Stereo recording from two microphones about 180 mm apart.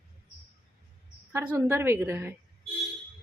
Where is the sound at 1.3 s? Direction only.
10° right (ahead or behind).